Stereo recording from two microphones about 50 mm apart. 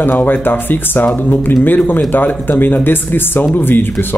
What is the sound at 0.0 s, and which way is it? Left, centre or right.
Speech, left.